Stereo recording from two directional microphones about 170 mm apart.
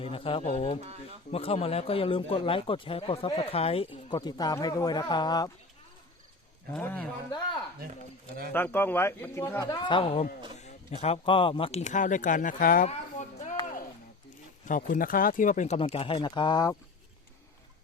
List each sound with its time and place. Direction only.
0.0 s speech: 35° left (ahead or behind)
6.8 s speech: 10° left (ahead or behind)
8.5 s speech: 10° left (ahead or behind); by 13.5 s 45° left (ahead or behind)
14.7 s speech: 50° left (ahead or behind); by 16.7 s 25° left (ahead or behind)